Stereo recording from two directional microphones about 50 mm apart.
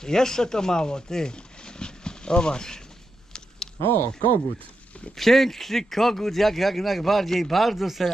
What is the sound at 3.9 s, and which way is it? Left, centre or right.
Speech, left.